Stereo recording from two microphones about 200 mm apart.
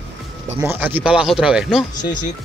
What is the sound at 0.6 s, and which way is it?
Speech, 10° right (ahead or behind).